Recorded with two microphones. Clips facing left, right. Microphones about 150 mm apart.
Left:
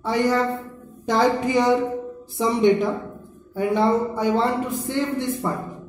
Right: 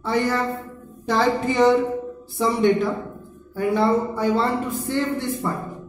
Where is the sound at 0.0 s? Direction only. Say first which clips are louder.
Left 2 dB; 15° left (ahead or behind).